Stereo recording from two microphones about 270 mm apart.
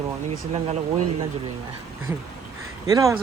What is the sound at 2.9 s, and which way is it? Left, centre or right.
Speech, centre.